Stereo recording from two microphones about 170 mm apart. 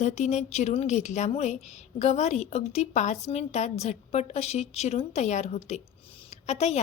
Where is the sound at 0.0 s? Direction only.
45° left (ahead or behind).